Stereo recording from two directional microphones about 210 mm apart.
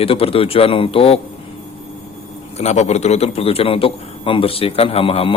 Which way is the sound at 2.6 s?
30° left (ahead or behind).